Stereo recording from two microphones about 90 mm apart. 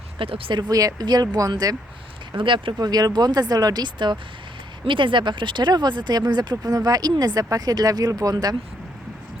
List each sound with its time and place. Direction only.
0.2 s speech: 85° right
0.7 s speech: 40° right (ahead or behind)
2.3 s speech: 65° right (ahead or behind)
2.7 s speech: 45° right (ahead or behind)